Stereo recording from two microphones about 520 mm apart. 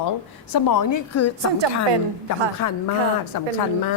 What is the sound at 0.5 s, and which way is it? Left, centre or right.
Speech, left.